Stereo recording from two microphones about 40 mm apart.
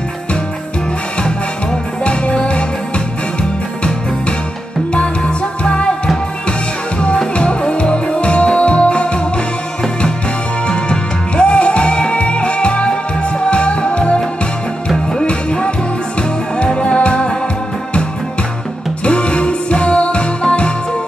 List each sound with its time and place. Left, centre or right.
2.0 s music: left
4.9 s music: left
7.3 s music: left
10.7 s music: left
19.0 s music: left